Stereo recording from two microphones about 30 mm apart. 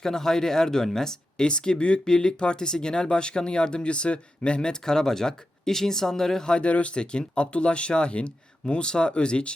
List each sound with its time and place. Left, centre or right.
0.0 s a man's voice: centre
1.5 s speech: left
4.7 s speech: centre
6.6 s speech: left
6.9 s speech: left